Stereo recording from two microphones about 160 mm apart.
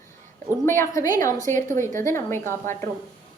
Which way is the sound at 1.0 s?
55° right (ahead or behind).